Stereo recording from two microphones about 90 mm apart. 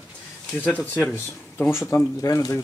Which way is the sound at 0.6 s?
15° left (ahead or behind).